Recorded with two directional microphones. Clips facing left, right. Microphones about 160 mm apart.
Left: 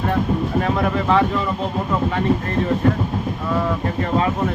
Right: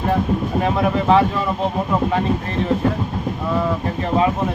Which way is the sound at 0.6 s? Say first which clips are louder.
Right 2 dB; 15° right (ahead or behind).